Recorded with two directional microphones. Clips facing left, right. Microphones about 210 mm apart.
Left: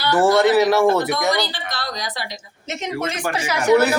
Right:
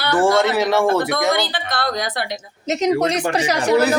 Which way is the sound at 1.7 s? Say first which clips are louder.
Right 6 dB; 55° right (ahead or behind).